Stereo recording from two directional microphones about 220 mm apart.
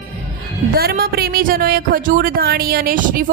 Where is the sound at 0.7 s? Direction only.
45° right (ahead or behind).